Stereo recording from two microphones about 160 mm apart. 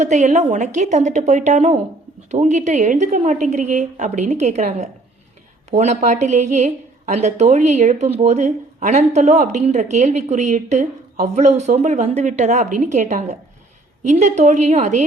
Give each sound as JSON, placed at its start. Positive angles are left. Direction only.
{"t": 0.0, "sound": "a woman's voice", "side_deg": -45}